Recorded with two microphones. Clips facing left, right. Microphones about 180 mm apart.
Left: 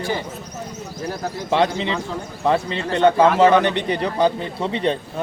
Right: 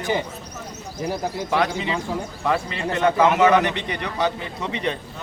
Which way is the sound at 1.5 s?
30° left (ahead or behind).